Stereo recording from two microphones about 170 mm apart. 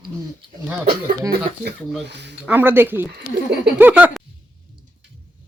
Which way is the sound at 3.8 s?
10° right (ahead or behind).